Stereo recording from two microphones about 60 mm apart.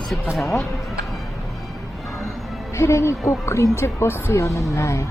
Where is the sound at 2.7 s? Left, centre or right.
Left.